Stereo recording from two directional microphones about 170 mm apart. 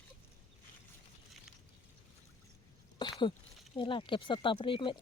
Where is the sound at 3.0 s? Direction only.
25° left (ahead or behind).